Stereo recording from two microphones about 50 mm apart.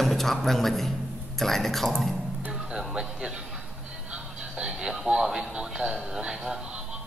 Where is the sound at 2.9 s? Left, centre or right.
Centre.